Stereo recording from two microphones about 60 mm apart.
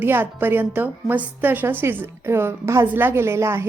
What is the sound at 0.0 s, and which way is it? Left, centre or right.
A woman's voice, right.